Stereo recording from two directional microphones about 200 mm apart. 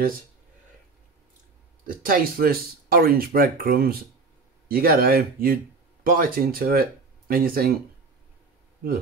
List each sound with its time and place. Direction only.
2.0 s speech: 45° right (ahead or behind)